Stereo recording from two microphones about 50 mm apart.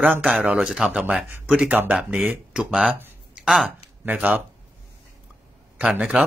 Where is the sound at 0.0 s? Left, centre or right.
Right.